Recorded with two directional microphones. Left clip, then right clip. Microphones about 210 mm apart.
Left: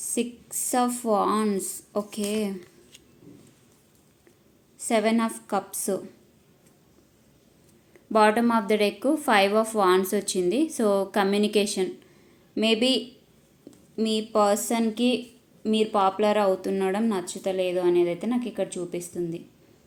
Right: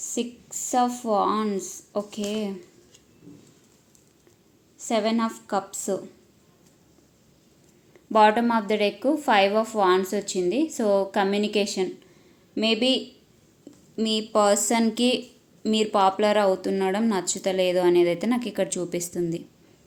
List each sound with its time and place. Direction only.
0.0 s a woman's voice: centre (ahead or behind)
4.8 s a woman's voice: centre (ahead or behind)
7.9 s a woman's voice: centre (ahead or behind); by 19.4 s 25° right (ahead or behind)